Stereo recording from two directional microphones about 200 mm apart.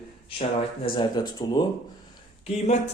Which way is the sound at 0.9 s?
20° left (ahead or behind).